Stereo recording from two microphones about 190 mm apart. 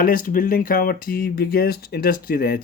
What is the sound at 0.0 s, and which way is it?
Speech, 50° left (ahead or behind).